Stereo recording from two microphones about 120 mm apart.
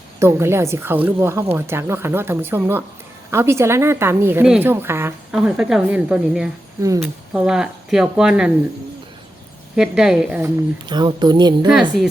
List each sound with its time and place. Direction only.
0.2 s a woman's voice: 20° right (ahead or behind)
5.3 s a woman's voice: 5° right (ahead or behind)
9.7 s a woman's voice: 5° right (ahead or behind)
10.8 s a woman's voice: 35° right (ahead or behind)
11.7 s a woman's voice: 5° right (ahead or behind)